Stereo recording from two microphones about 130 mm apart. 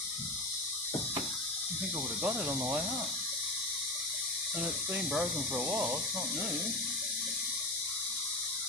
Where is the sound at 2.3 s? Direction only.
20° right (ahead or behind).